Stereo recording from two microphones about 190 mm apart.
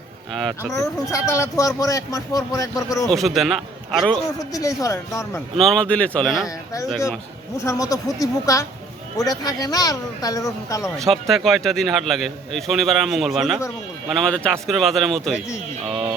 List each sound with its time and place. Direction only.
1.1 s speech: 15° left (ahead or behind)
3.1 s a man's voice: centre (ahead or behind)
4.5 s speech: 15° left (ahead or behind)
5.5 s a man's voice: centre (ahead or behind)
7.6 s speech: 15° left (ahead or behind)
10.9 s a man's voice: centre (ahead or behind)